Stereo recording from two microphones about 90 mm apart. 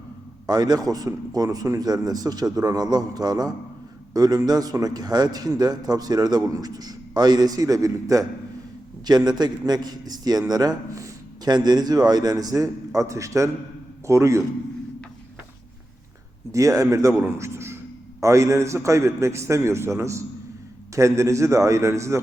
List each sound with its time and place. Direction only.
0.4 s a man's voice: 50° right (ahead or behind)
9.0 s a man's voice: 50° right (ahead or behind); by 14.4 s 35° right (ahead or behind)
16.5 s a man's voice: 35° right (ahead or behind)